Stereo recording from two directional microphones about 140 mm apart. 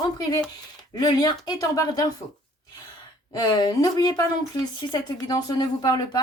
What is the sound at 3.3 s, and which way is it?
Speech, 30° left (ahead or behind).